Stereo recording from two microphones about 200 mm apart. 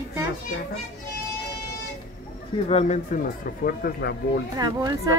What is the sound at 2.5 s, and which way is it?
Speech, 30° left (ahead or behind).